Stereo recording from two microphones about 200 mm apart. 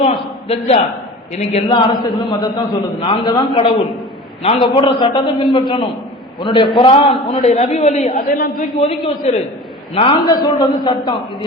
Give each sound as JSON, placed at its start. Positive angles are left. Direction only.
{"t": 0.0, "sound": "a man's voice", "side_deg": 30}
{"t": 8.8, "sound": "a man's voice", "side_deg": 30}